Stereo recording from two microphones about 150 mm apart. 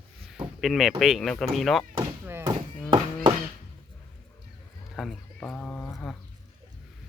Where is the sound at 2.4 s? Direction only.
30° right (ahead or behind).